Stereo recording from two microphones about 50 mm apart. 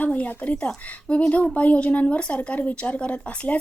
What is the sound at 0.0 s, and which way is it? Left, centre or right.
Speech, left.